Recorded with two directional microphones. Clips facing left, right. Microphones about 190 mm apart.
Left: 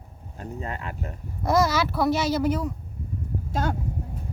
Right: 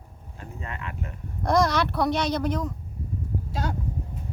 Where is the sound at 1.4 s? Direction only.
5° left (ahead or behind).